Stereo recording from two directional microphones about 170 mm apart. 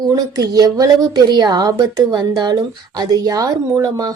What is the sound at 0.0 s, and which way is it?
A woman's voice, 20° right (ahead or behind).